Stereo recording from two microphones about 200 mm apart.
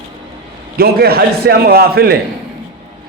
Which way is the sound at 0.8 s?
50° right (ahead or behind).